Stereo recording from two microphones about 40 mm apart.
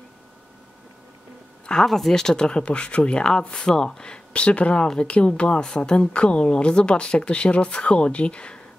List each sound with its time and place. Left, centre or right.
1.8 s speech: centre; by 8.5 s left